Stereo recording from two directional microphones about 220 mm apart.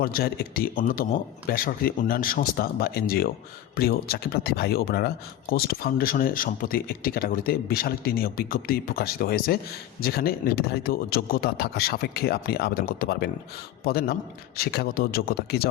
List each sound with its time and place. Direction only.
0.0 s a man's voice: 40° left (ahead or behind)